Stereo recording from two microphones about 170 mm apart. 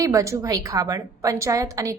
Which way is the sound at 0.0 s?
20° right (ahead or behind).